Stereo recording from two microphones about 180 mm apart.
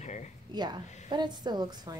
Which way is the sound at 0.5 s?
25° right (ahead or behind).